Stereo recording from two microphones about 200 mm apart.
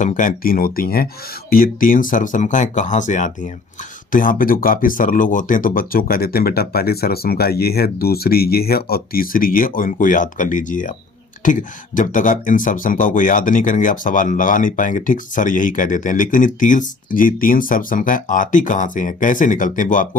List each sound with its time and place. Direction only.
0.0 s speech: 40° left (ahead or behind)